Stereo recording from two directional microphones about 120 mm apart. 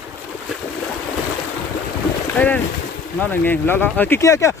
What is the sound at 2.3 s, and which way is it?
Speech, 10° left (ahead or behind).